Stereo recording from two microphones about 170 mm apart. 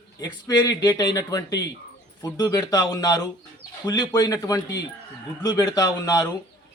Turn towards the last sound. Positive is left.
turn(degrees=20)  # may be behind; listen again after turning